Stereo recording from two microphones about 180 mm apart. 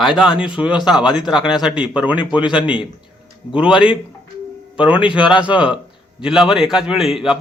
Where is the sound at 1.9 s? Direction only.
10° right (ahead or behind).